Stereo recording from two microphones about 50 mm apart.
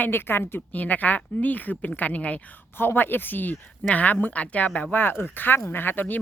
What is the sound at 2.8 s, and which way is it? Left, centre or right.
A woman's voice, left.